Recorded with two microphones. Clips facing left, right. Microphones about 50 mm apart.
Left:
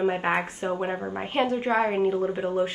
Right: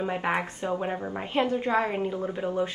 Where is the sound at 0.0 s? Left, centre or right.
Centre.